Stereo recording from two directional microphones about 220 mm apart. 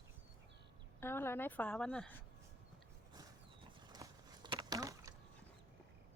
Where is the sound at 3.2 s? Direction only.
15° right (ahead or behind).